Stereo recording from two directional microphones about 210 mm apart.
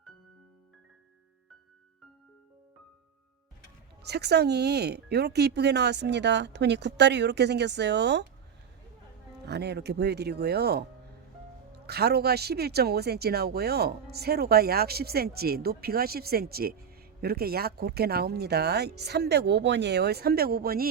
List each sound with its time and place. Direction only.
4.0 s speech: 50° right (ahead or behind)
9.5 s speech: 50° right (ahead or behind)